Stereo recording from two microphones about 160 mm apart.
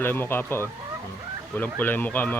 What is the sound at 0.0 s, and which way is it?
Speech, 15° left (ahead or behind).